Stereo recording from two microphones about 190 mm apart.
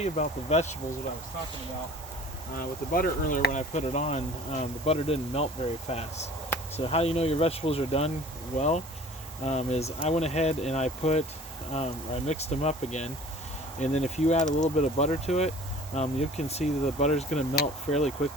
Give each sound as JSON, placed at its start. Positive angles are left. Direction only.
{"t": 0.0, "sound": "speech", "side_deg": 35}
{"t": 2.6, "sound": "speech", "side_deg": 50}